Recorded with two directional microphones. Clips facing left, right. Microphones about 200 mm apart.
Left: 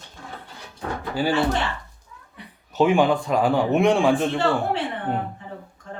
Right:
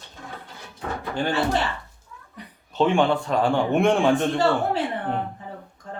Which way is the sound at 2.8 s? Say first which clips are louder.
Left 2 dB; 10° left (ahead or behind).